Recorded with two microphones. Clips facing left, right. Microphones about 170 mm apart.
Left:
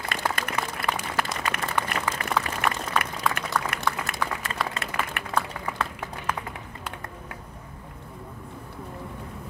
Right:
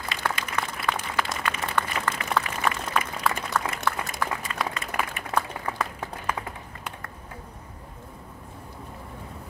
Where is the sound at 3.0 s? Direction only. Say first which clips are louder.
Even; 70° left (ahead or behind).